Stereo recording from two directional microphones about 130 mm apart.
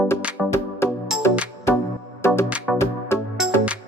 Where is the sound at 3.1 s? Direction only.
20° left (ahead or behind).